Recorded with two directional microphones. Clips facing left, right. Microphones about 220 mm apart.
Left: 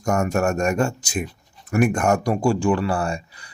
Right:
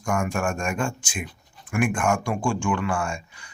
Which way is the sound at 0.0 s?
40° left (ahead or behind).